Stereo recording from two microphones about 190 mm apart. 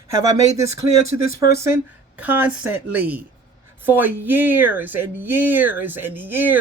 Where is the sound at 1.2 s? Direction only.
50° left (ahead or behind).